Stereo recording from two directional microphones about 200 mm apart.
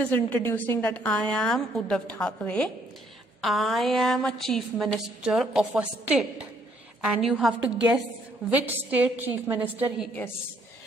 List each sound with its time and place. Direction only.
0.0 s a woman's voice: 10° left (ahead or behind); by 10.0 s 10° right (ahead or behind)